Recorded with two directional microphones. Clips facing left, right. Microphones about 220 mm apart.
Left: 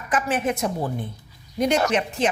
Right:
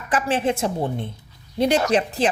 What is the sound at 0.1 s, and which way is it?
A woman's voice, 30° right (ahead or behind).